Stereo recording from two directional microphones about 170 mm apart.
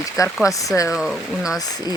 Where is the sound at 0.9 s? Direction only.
5° right (ahead or behind).